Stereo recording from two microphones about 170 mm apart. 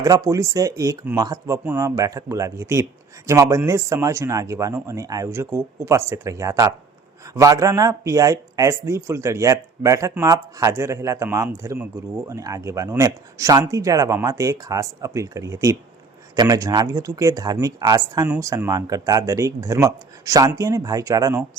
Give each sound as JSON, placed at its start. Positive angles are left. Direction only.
{"t": 0.0, "sound": "speech", "side_deg": -20}